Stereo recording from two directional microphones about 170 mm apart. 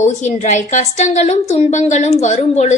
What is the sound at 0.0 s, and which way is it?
A woman's voice, 45° left (ahead or behind).